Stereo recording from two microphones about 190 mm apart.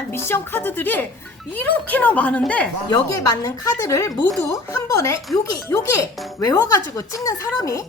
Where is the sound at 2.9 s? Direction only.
20° left (ahead or behind).